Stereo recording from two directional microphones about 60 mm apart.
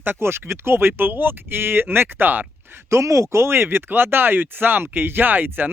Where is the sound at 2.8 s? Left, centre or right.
Right.